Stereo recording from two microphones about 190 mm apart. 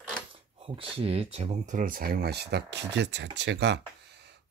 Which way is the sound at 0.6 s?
30° right (ahead or behind).